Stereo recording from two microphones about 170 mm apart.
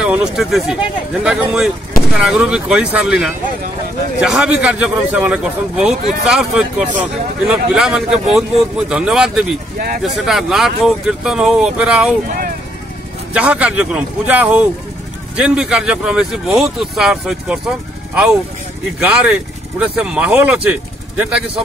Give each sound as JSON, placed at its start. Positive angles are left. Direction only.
{"t": 0.0, "sound": "speech", "side_deg": -5}
{"t": 13.3, "sound": "speech", "side_deg": -10}